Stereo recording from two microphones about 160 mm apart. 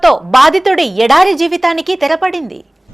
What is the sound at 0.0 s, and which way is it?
Speech, centre (ahead or behind).